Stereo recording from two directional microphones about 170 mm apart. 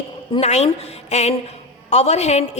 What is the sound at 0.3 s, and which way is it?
A woman's voice, 40° left (ahead or behind).